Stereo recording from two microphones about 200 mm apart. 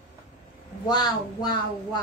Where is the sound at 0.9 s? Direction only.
20° left (ahead or behind).